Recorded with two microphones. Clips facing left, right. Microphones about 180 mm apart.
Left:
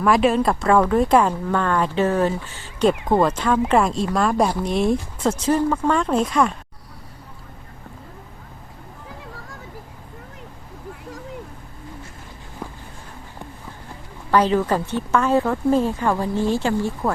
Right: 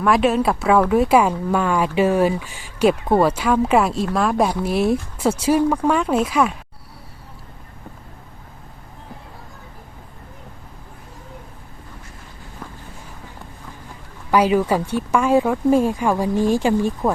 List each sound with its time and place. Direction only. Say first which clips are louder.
0.0 s speech: even; centre (ahead or behind)
12.6 s vehicle: left 3 dB; 15° left (ahead or behind)
14.3 s speech: right 1 dB; 10° right (ahead or behind)